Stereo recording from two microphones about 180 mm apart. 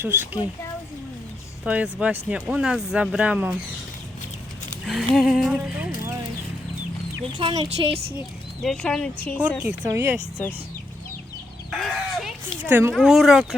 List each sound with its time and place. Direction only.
0.0 s speech: 10° right (ahead or behind)
1.6 s speech: 5° right (ahead or behind)
4.9 s speech: centre (ahead or behind)
7.3 s speech: 30° right (ahead or behind)
8.6 s speech: 5° left (ahead or behind)
9.6 s speech: 10° right (ahead or behind)
11.7 s chicken: centre (ahead or behind)
12.6 s speech: 10° right (ahead or behind)